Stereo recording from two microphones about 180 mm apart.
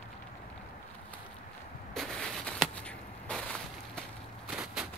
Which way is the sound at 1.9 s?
5° left (ahead or behind).